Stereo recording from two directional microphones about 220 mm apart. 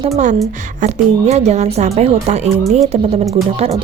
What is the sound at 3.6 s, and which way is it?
Speech, 30° right (ahead or behind).